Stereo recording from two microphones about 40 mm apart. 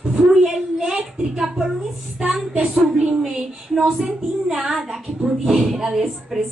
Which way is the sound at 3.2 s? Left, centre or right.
Centre.